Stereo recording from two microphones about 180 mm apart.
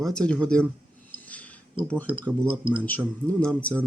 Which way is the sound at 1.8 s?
30° right (ahead or behind).